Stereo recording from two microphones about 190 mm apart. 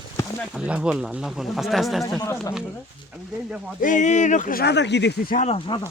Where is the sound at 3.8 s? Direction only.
40° left (ahead or behind); by 5.3 s 60° left (ahead or behind).